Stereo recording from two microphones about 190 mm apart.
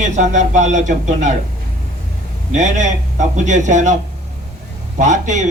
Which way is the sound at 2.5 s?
40° right (ahead or behind).